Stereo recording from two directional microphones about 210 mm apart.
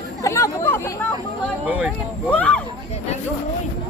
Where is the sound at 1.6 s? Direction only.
5° right (ahead or behind).